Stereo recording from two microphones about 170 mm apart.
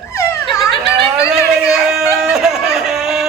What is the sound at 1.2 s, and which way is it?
Speech, 5° right (ahead or behind).